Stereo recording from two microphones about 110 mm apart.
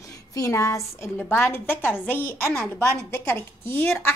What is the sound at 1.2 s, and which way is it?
A woman's voice, 20° left (ahead or behind).